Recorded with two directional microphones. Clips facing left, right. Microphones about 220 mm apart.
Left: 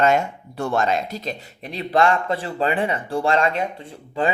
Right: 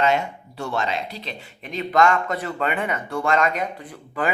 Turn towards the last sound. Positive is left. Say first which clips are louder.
# left 3 dB
turn(degrees=25)  # may be behind; listen again after turning